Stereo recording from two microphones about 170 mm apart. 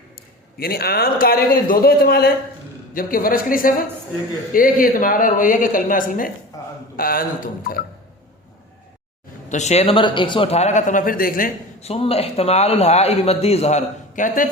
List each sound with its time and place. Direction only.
0.6 s a man's voice: 65° left (ahead or behind)
6.5 s a sound: 20° left (ahead or behind)
6.9 s a man's voice: 60° left (ahead or behind)
9.5 s a man's voice: 40° left (ahead or behind)
11.8 s a man's voice: 35° left (ahead or behind)